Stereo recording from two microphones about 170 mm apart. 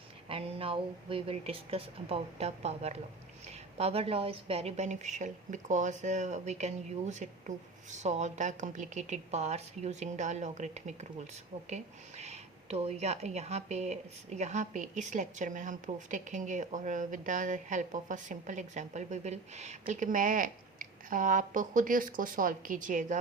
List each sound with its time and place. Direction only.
0.3 s speech: 35° right (ahead or behind)